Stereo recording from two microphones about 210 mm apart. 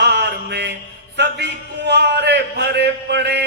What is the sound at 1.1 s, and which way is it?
A man's voice, 55° right (ahead or behind).